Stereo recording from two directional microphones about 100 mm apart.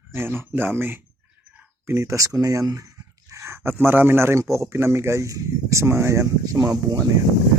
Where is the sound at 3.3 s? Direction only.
25° right (ahead or behind).